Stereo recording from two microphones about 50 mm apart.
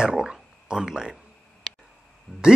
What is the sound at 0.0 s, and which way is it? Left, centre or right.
Speech, centre.